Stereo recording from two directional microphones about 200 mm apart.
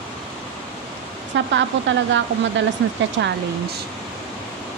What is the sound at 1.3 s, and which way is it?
Speech, 65° right (ahead or behind).